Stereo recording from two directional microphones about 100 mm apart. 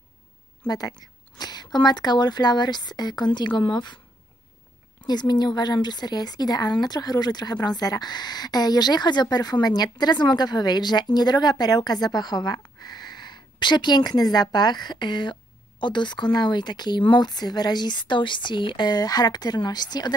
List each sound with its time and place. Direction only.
0.7 s speech: 40° left (ahead or behind)
5.0 s speech: 45° left (ahead or behind)